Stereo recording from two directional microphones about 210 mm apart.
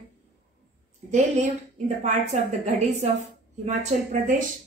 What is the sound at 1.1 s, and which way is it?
A woman's voice, 35° right (ahead or behind).